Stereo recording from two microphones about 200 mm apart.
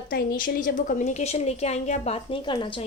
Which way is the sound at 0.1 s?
45° left (ahead or behind).